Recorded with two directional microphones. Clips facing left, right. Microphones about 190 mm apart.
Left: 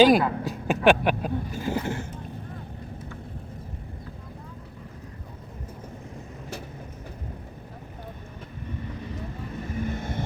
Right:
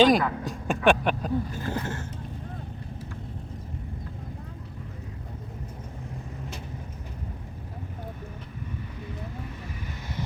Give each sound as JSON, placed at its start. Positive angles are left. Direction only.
{"t": 0.0, "sound": "speech", "side_deg": 5}
{"t": 0.4, "sound": "music", "side_deg": 5}
{"t": 0.9, "sound": "speech", "side_deg": 5}
{"t": 9.6, "sound": "vehicle", "side_deg": 50}